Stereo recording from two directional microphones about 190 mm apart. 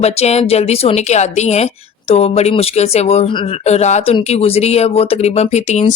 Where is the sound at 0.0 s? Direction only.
35° left (ahead or behind).